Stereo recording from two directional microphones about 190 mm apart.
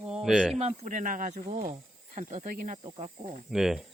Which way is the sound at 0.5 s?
35° right (ahead or behind).